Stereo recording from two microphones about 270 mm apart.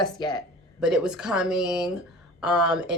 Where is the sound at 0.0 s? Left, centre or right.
Centre.